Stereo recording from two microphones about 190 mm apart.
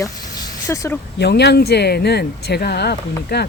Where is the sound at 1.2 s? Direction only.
60° left (ahead or behind).